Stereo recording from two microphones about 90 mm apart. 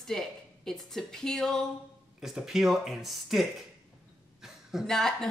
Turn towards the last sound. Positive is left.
turn(degrees=5)  # may be behind; listen again after turning